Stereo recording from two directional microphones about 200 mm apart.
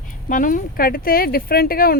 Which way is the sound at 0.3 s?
40° left (ahead or behind).